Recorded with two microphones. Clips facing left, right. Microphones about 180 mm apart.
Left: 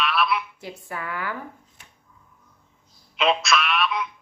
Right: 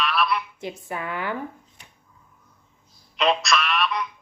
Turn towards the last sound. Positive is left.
turn(degrees=0)  # may be behind; listen again after turning